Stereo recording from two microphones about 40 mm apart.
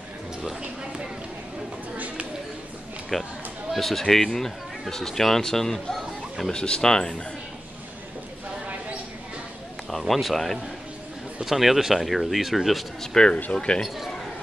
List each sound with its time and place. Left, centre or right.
3.1 s speech: centre
6.5 s speech: left
9.8 s speech: centre
13.0 s speech: centre
13.8 s speech: centre